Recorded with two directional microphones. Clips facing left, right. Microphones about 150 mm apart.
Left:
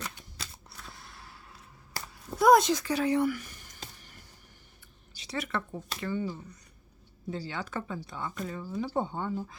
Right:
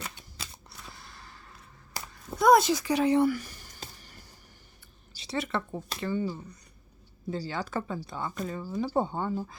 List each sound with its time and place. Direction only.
0.9 s whip: centre (ahead or behind)
2.1 s a sound: centre (ahead or behind); by 4.3 s 35° right (ahead or behind)
5.1 s a woman's voice: 30° right (ahead or behind)